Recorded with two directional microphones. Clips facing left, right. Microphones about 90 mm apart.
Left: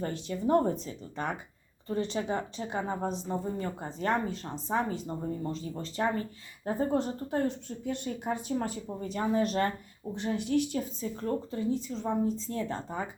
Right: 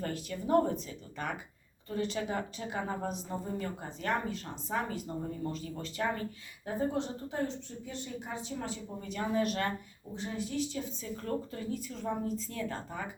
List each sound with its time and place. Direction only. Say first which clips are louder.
0.0 s speech: left 5 dB; 30° left (ahead or behind); by 8.8 s 45° left (ahead or behind)
9.0 s speech: left 3 dB; 35° left (ahead or behind)
10.2 s a woman's voice: left 6 dB; 70° left (ahead or behind)
11.0 s speech: left 4 dB; 25° left (ahead or behind)